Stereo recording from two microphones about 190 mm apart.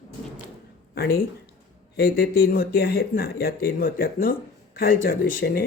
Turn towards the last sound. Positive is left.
turn(degrees=50)  # may be behind; listen again after turning